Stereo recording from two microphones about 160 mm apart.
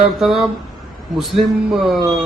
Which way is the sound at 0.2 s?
Centre (ahead or behind).